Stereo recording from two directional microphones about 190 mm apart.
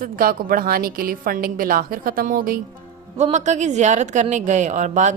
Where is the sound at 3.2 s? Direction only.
35° right (ahead or behind).